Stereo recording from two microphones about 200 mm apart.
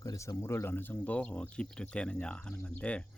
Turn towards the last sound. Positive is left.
turn(degrees=5)  # may be behind; listen again after turning